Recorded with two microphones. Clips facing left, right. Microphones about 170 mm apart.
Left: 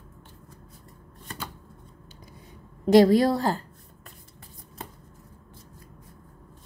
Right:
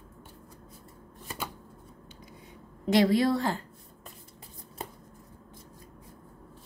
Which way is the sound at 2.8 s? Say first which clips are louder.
Left 6 dB; 40° left (ahead or behind).